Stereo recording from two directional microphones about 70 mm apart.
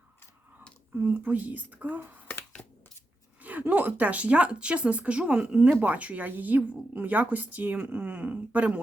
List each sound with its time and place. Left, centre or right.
0.9 s a woman's voice: right
3.4 s a woman's voice: right